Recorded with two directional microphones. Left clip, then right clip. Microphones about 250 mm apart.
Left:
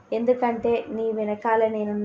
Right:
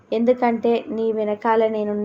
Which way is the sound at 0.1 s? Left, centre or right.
Right.